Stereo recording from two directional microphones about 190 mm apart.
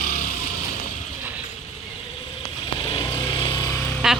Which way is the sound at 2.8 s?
25° left (ahead or behind).